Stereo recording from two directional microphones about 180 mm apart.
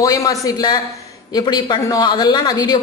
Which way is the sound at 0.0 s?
20° left (ahead or behind).